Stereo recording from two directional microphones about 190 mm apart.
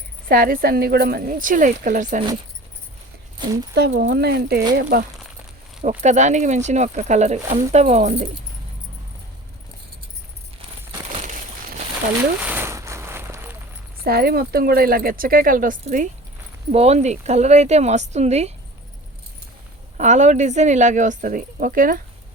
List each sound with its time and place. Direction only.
0.3 s speech: 50° right (ahead or behind)
3.4 s speech: 20° right (ahead or behind)
3.8 s speech: 60° right (ahead or behind)
6.0 s speech: 40° right (ahead or behind)
12.4 s a sound: 10° right (ahead or behind)
14.0 s speech: 55° right (ahead or behind); by 18.5 s 35° right (ahead or behind)
20.0 s speech: 40° right (ahead or behind)